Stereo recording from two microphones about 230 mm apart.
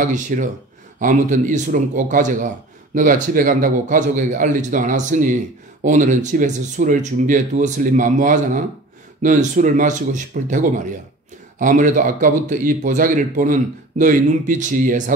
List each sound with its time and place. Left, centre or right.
0.0 s speech: right